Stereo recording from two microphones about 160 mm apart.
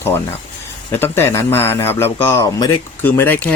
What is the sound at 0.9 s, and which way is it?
Speech, 15° left (ahead or behind).